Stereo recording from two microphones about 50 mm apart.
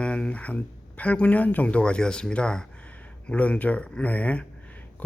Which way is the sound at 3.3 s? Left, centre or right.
Left.